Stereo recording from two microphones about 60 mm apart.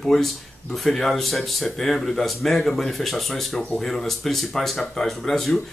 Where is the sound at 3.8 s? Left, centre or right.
Centre.